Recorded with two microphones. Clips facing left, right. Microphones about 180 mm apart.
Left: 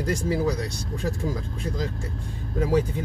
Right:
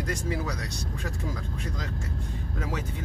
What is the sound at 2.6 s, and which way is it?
Speech, 30° left (ahead or behind).